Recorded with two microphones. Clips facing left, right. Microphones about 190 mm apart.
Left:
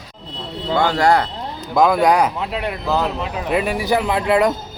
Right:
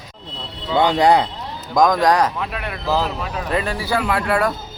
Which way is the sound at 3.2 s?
15° left (ahead or behind).